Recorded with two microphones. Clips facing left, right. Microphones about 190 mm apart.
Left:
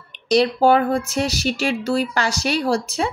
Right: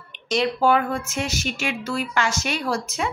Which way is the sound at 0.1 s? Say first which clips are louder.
Left 6 dB; 35° left (ahead or behind).